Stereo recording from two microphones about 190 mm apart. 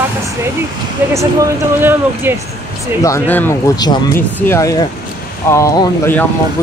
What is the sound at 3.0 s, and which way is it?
Speech, 15° left (ahead or behind).